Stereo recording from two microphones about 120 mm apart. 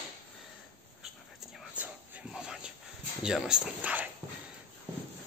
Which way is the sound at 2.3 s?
5° right (ahead or behind).